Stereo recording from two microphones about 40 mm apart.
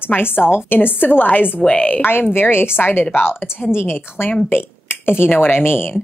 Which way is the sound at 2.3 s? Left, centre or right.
Left.